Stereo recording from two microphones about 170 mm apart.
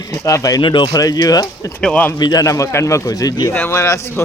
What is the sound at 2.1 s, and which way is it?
A man's voice, 25° left (ahead or behind).